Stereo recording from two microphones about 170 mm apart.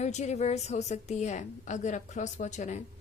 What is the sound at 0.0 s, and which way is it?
A woman's voice, 45° left (ahead or behind).